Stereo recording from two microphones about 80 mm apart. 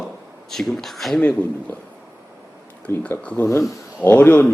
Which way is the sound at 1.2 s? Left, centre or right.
Centre.